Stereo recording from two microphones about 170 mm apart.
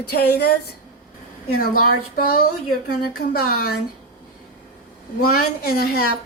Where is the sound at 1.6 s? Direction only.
60° left (ahead or behind).